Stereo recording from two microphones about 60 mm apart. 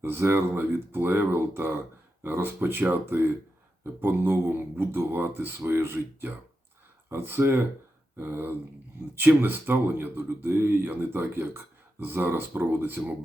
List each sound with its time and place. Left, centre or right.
0.0 s speech: right